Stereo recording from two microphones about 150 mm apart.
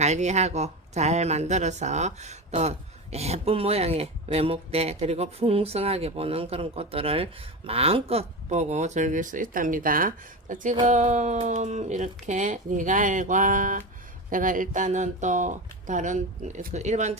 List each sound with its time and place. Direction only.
0.0 s speech: 50° right (ahead or behind)